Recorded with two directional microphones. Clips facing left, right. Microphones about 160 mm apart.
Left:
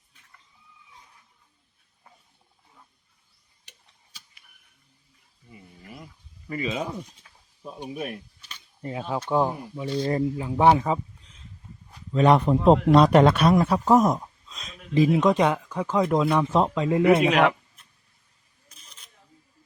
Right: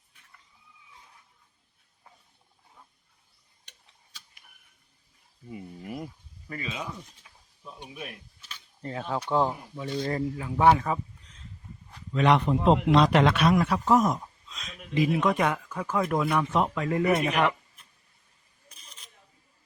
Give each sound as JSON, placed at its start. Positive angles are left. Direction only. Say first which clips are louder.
{"t": 6.5, "sound": "speech", "louder": "left 7 dB", "side_deg": 5}
{"t": 7.3, "sound": "a sound", "louder": "even", "side_deg": -10}
{"t": 7.7, "sound": "a man's voice", "louder": "left 8 dB", "side_deg": 40}
{"t": 8.4, "sound": "a sound", "louder": "even", "side_deg": 0}
{"t": 8.8, "sound": "speech", "louder": "left 2 dB", "side_deg": 15}
{"t": 12.1, "sound": "a man's voice", "louder": "left 4 dB", "side_deg": 35}
{"t": 17.2, "sound": "speech", "louder": "left 5 dB", "side_deg": 80}